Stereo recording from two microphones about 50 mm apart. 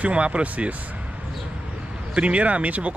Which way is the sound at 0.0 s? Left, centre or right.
Right.